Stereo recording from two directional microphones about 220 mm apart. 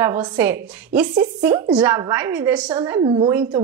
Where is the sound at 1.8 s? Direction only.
10° right (ahead or behind).